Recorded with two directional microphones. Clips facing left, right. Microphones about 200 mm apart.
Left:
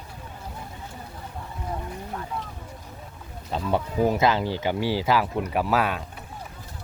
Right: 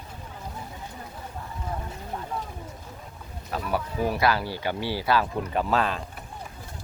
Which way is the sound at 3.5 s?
25° left (ahead or behind).